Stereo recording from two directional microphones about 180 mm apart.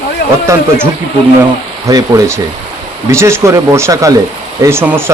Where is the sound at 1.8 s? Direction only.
20° right (ahead or behind).